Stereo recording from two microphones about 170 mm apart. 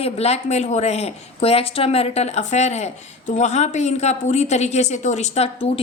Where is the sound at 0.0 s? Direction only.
40° left (ahead or behind).